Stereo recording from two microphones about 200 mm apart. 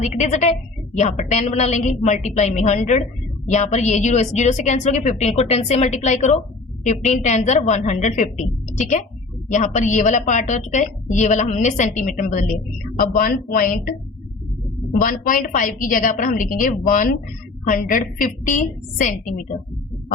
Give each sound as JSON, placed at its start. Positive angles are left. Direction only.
{"t": 0.0, "sound": "a woman's voice", "side_deg": 35}
{"t": 9.5, "sound": "a woman's voice", "side_deg": 35}
{"t": 15.0, "sound": "a woman's voice", "side_deg": 45}